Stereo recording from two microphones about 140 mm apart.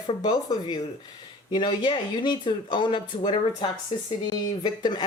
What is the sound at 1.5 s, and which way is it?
Speech, 35° left (ahead or behind).